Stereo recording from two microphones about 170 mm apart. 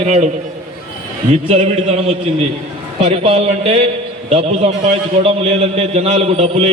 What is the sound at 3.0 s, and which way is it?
A man's voice, 35° right (ahead or behind).